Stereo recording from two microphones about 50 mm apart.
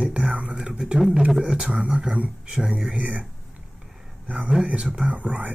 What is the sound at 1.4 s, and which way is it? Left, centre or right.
Speech, right.